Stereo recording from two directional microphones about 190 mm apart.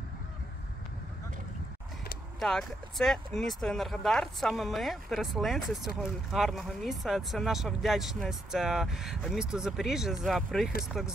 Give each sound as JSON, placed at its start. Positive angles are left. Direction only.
{"t": 2.4, "sound": "speech", "side_deg": 0}